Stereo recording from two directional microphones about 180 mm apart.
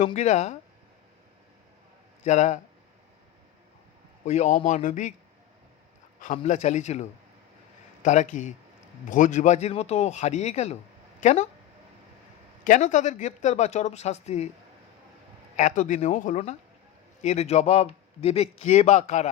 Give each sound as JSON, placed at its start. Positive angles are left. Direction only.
{"t": 0.0, "sound": "a man's voice", "side_deg": 40}
{"t": 2.2, "sound": "a man's voice", "side_deg": 40}
{"t": 4.3, "sound": "speech", "side_deg": 40}
{"t": 6.2, "sound": "a man's voice", "side_deg": 40}
{"t": 12.6, "sound": "a man's voice", "side_deg": 45}
{"t": 15.5, "sound": "a man's voice", "side_deg": 45}